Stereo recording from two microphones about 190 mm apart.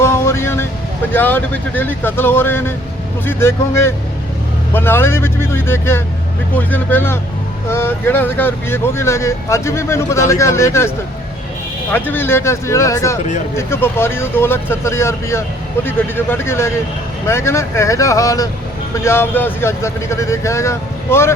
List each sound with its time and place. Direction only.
0.0 s music: 15° left (ahead or behind)
1.1 s speech: 10° left (ahead or behind)